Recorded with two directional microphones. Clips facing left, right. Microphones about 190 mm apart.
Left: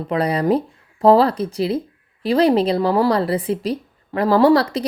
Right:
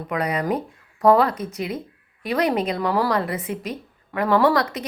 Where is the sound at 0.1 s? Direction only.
30° left (ahead or behind).